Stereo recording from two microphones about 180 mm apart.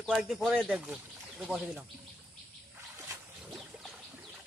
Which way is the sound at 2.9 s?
10° right (ahead or behind).